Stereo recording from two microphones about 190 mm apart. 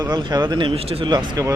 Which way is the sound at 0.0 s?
20° right (ahead or behind).